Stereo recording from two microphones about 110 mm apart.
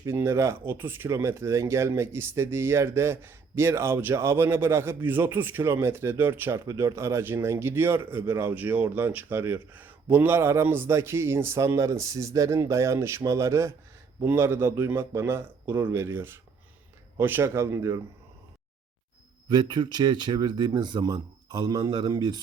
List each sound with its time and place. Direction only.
0.0 s speech: 20° right (ahead or behind)
19.5 s speech: 40° right (ahead or behind)